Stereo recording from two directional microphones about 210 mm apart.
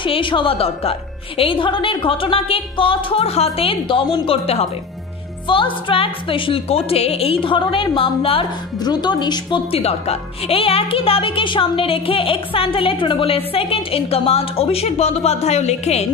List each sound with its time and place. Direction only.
0.0 s a woman's voice: 25° left (ahead or behind)